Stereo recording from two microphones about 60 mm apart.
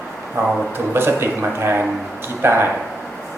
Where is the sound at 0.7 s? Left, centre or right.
Right.